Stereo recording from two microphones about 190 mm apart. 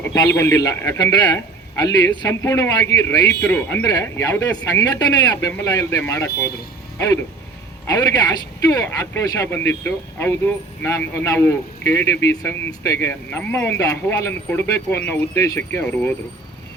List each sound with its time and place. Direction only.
0.0 s a man's voice: 15° left (ahead or behind)
7.9 s a man's voice: 20° left (ahead or behind)